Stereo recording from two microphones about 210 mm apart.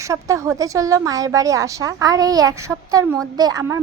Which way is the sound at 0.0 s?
15° right (ahead or behind).